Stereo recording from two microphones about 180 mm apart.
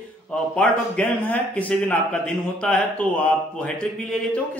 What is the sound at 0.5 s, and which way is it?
A man's voice, 10° left (ahead or behind).